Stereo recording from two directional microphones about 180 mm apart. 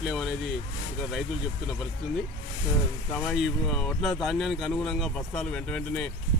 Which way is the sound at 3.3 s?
Centre (ahead or behind).